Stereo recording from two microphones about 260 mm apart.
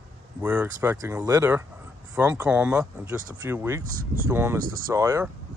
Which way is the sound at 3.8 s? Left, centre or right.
Right.